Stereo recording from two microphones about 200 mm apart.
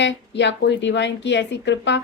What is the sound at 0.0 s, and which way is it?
A woman's voice, 60° left (ahead or behind).